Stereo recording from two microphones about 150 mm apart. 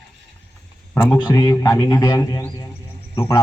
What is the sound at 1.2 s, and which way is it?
Speech, 25° left (ahead or behind).